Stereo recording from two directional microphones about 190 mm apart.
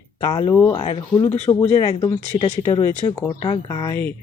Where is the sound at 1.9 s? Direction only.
25° left (ahead or behind).